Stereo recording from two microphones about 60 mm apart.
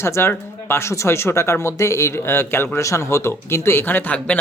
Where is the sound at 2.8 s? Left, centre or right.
Left.